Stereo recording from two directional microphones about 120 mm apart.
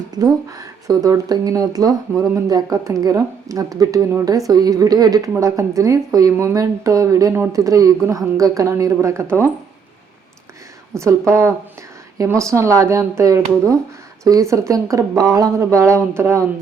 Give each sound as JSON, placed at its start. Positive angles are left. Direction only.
{"t": 0.1, "sound": "speech", "side_deg": -30}
{"t": 10.9, "sound": "speech", "side_deg": -25}